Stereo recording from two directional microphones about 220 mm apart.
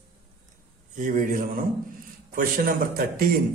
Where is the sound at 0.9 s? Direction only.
35° right (ahead or behind).